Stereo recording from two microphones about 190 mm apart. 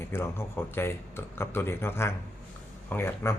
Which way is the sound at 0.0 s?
15° left (ahead or behind).